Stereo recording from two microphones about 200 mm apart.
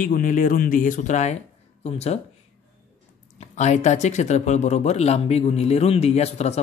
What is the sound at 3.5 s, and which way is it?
Speech, 35° left (ahead or behind).